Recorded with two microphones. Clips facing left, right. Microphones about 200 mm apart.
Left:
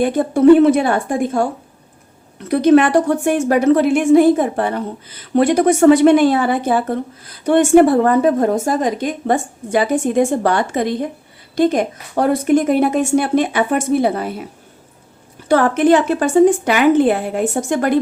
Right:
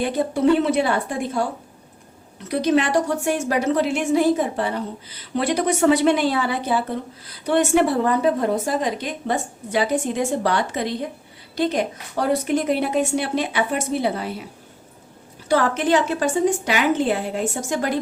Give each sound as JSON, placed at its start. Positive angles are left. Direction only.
{"t": 0.0, "sound": "a woman's voice", "side_deg": 50}
{"t": 2.5, "sound": "a woman's voice", "side_deg": 55}
{"t": 15.4, "sound": "a woman's voice", "side_deg": 55}